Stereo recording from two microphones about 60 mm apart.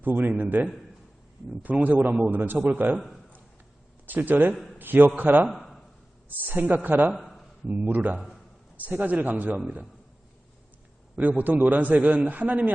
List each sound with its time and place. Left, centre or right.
0.0 s a man's voice: right
4.0 s a man's voice: right
4.5 s a man's voice: centre
4.8 s a man's voice: right
5.5 s a sound: centre
6.2 s a man's voice: right
7.2 s a sound: centre
7.9 s a man's voice: right
11.2 s a man's voice: right